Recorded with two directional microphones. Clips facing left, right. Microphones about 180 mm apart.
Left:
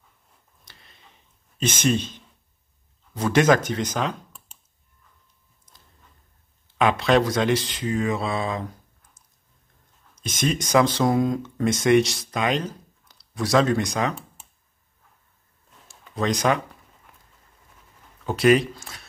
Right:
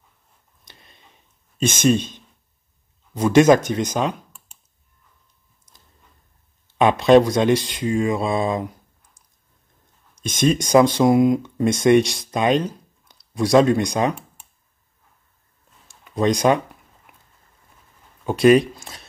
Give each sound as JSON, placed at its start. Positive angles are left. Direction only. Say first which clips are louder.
{"t": 0.7, "sound": "a sound", "louder": "right 4 dB", "side_deg": -20}
{"t": 1.7, "sound": "speech", "louder": "right 5 dB", "side_deg": -20}
{"t": 6.8, "sound": "speech", "louder": "right 6 dB", "side_deg": -20}
{"t": 10.3, "sound": "speech", "louder": "right 5 dB", "side_deg": -20}
{"t": 12.3, "sound": "a sound", "louder": "right 5 dB", "side_deg": -20}
{"t": 13.4, "sound": "speech", "louder": "right 5 dB", "side_deg": -15}
{"t": 16.0, "sound": "speech", "louder": "right 5 dB", "side_deg": -20}
{"t": 18.8, "sound": "speech", "louder": "right 2 dB", "side_deg": -20}